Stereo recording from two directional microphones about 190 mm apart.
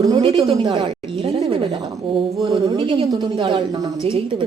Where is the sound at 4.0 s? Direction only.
30° right (ahead or behind).